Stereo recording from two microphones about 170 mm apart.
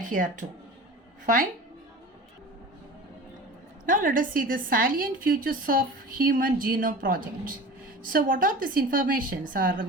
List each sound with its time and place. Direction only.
0.0 s speech: 50° right (ahead or behind)
3.8 s a woman's voice: 55° right (ahead or behind)